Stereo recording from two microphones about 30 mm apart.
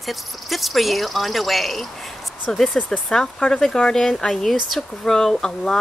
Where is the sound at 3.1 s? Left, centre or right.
Left.